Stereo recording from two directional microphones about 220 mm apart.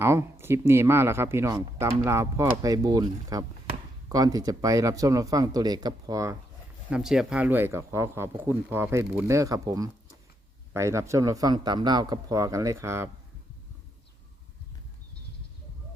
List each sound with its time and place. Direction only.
0.0 s speech: 10° right (ahead or behind)
6.9 s speech: centre (ahead or behind)